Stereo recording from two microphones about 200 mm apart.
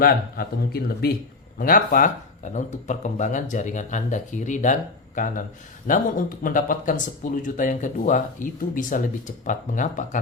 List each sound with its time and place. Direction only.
0.0 s speech: 50° left (ahead or behind)